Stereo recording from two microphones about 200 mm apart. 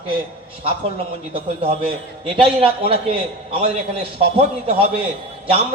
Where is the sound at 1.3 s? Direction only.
30° right (ahead or behind).